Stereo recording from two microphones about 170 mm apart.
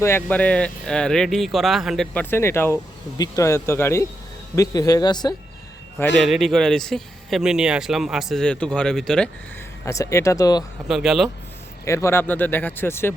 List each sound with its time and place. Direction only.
0.0 s speech: 10° left (ahead or behind)
2.3 s speech: 15° left (ahead or behind)
6.1 s speech: centre (ahead or behind)
9.8 s speech: 20° left (ahead or behind)
10.8 s speech: centre (ahead or behind)
11.9 s speech: 15° left (ahead or behind)